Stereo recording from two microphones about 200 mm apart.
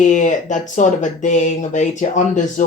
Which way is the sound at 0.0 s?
35° left (ahead or behind).